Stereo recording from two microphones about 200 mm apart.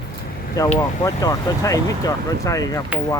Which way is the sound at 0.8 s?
15° left (ahead or behind).